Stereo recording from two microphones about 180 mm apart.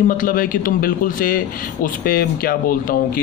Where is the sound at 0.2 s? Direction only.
50° left (ahead or behind).